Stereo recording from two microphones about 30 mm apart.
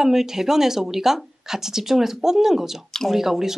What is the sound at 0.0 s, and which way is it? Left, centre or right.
Speech, centre.